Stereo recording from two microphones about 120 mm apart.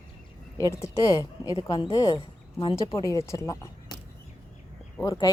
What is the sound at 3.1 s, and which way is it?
Speech, 25° left (ahead or behind).